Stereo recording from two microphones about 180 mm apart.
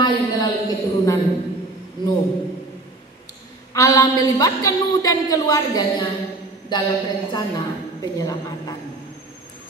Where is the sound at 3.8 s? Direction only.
20° left (ahead or behind).